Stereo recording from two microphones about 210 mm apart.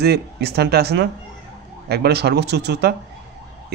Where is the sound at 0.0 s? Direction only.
50° right (ahead or behind).